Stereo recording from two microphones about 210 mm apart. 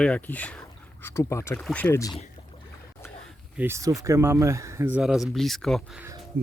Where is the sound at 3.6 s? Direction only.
15° right (ahead or behind).